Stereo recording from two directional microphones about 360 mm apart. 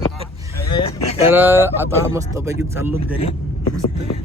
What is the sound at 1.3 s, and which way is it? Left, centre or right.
Speech, centre.